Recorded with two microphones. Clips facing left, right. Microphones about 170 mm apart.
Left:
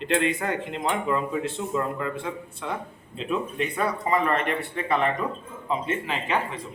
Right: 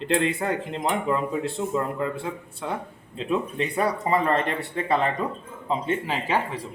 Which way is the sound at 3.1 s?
30° right (ahead or behind).